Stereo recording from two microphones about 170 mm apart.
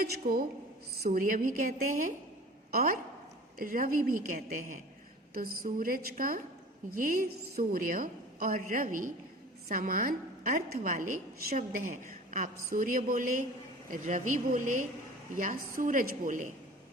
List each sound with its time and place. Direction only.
0.0 s a woman's voice: 60° right (ahead or behind)